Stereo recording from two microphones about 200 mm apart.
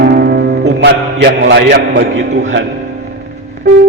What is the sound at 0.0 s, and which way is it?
Music, 55° right (ahead or behind).